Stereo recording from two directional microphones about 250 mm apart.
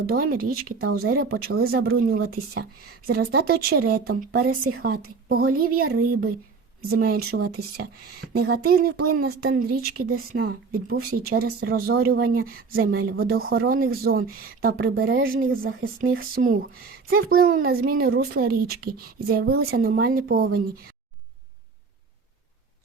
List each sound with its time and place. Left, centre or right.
0.0 s a woman's voice: right